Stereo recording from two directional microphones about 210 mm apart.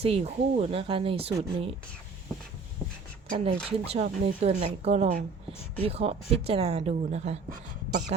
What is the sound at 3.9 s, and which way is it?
Speech, 30° right (ahead or behind).